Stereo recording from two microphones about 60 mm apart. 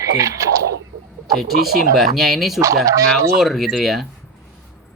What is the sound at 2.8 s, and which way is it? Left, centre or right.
Speech, right.